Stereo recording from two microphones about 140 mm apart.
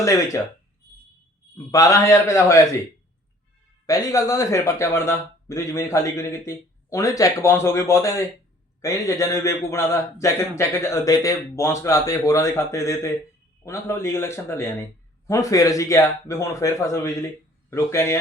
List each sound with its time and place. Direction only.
0.0 s speech: 20° left (ahead or behind)
1.5 s speech: 25° left (ahead or behind)
3.8 s speech: 25° left (ahead or behind)